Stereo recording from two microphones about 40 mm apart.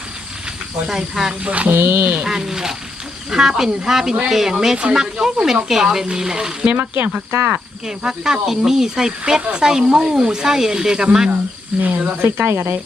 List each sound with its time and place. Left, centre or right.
0.9 s speech: centre
1.3 s speech: right
1.7 s speech: right
2.2 s speech: centre
4.8 s speech: right
5.2 s speech: centre
6.7 s speech: right
7.3 s speech: right
7.9 s speech: centre
11.8 s speech: right
12.4 s speech: right